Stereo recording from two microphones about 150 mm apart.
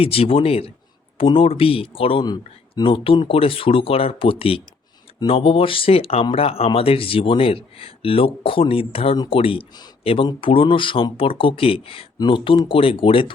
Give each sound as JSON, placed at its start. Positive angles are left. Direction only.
{"t": 0.0, "sound": "speech", "side_deg": 40}